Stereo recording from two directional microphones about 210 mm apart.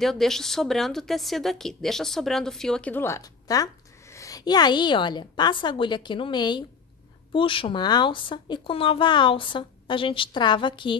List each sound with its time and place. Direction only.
0.0 s a woman's voice: centre (ahead or behind); by 11.0 s 25° left (ahead or behind)